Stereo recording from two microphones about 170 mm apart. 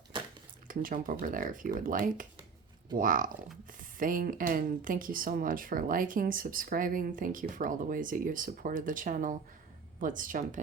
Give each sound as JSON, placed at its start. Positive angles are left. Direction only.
{"t": 0.7, "sound": "speech", "side_deg": -55}